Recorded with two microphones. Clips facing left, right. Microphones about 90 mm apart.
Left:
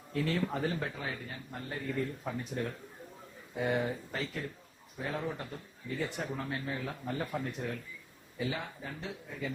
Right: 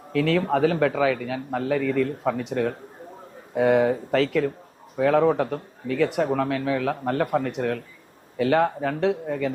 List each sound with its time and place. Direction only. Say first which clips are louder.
0.1 s a man's voice: right 11 dB; 85° right
3.5 s a man's voice: right 13 dB; 75° right (ahead or behind)